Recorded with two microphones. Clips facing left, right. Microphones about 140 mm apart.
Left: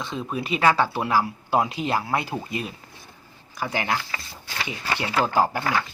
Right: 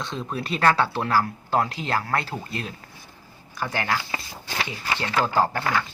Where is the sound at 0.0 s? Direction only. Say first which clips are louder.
Left 1 dB; 5° left (ahead or behind).